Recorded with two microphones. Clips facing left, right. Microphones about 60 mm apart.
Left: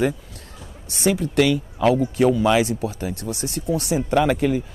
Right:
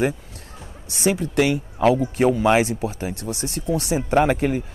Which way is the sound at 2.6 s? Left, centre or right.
Right.